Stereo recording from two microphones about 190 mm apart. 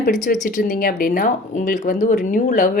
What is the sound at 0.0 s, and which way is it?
Speech, 45° left (ahead or behind).